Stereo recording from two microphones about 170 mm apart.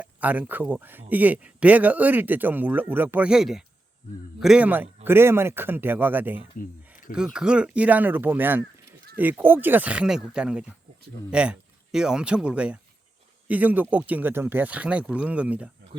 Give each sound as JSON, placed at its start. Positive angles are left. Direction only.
{"t": 0.0, "sound": "a man's voice", "side_deg": -10}
{"t": 6.6, "sound": "a sound", "side_deg": 50}
{"t": 7.1, "sound": "a man's voice", "side_deg": -5}